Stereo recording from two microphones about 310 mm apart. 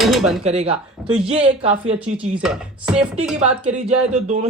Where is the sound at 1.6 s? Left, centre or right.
Centre.